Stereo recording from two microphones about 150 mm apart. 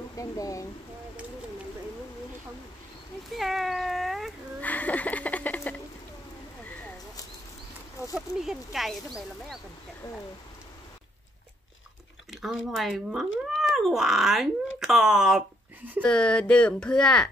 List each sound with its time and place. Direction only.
0.1 s speech: 20° left (ahead or behind)
3.3 s cat: centre (ahead or behind)
4.6 s a sound: 10° left (ahead or behind)
8.1 s speech: 5° right (ahead or behind)
12.3 s speech: centre (ahead or behind)
16.0 s speech: 5° left (ahead or behind)